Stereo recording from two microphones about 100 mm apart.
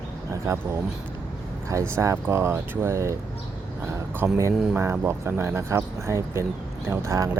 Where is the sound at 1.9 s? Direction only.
30° right (ahead or behind).